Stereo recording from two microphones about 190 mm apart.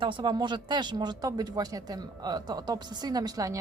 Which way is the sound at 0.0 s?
25° right (ahead or behind).